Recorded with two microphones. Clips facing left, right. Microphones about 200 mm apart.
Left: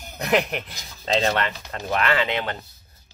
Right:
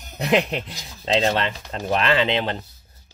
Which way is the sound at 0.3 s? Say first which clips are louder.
Right 2 dB; 20° right (ahead or behind).